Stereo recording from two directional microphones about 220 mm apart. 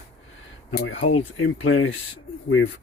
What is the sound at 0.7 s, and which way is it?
Speech, 55° left (ahead or behind).